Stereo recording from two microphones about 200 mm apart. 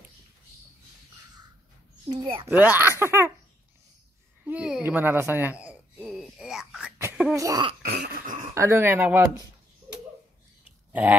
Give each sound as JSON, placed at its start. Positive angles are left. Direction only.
{"t": 2.0, "sound": "a child's voice", "side_deg": -25}
{"t": 2.5, "sound": "speech", "side_deg": -10}
{"t": 4.5, "sound": "a sound", "side_deg": -5}
{"t": 7.0, "sound": "cough", "side_deg": -10}
{"t": 7.9, "sound": "cough", "side_deg": -50}
{"t": 8.5, "sound": "speech", "side_deg": -15}
{"t": 10.9, "sound": "a sound", "side_deg": -10}